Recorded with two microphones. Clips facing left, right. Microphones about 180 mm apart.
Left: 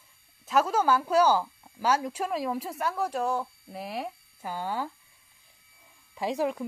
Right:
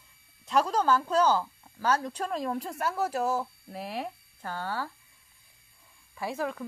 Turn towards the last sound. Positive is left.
turn(degrees=20)  # may be behind; listen again after turning